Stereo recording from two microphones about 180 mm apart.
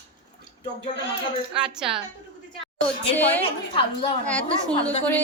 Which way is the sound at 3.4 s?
30° left (ahead or behind).